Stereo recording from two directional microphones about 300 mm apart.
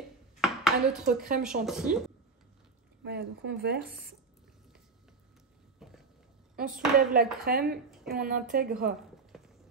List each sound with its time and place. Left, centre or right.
0.4 s a sound: centre
1.4 s speech: centre
3.0 s speech: right
5.8 s a sound: centre
6.6 s speech: centre
7.0 s a woman's voice: right
7.9 s a sound: centre
8.2 s a woman's voice: right
9.3 s clip-clop: centre